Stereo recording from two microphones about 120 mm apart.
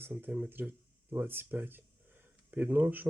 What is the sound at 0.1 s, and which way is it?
Speech, 10° right (ahead or behind).